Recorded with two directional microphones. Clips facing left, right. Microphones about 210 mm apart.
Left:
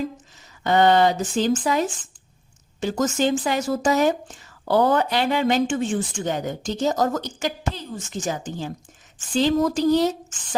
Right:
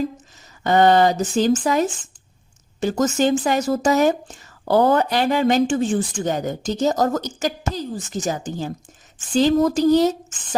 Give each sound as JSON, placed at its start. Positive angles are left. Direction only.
{"t": 0.6, "sound": "a woman's voice", "side_deg": -40}